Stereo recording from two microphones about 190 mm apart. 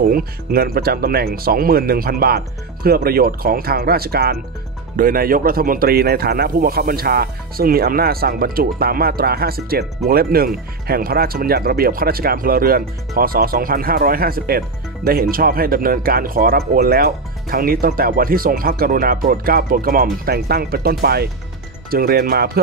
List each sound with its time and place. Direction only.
0.0 s speech: 50° right (ahead or behind)